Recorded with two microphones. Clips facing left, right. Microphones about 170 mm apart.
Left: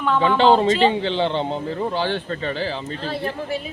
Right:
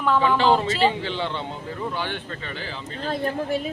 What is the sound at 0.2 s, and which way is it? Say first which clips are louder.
Speech: left 7 dB; 25° left (ahead or behind).